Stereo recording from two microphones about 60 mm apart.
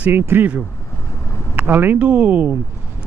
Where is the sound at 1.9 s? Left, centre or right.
Right.